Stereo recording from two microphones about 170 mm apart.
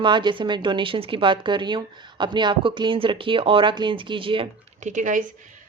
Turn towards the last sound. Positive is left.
turn(degrees=-50)  # may be behind; listen again after turning